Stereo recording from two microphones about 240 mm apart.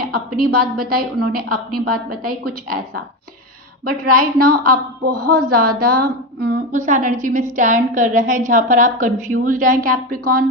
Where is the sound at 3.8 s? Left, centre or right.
Right.